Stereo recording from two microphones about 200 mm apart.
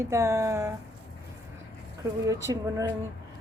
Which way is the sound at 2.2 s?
15° right (ahead or behind).